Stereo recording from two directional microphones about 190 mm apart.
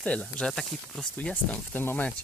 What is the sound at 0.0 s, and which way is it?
Speech, 5° left (ahead or behind).